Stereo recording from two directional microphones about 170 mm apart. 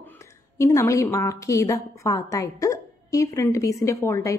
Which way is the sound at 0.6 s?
15° left (ahead or behind).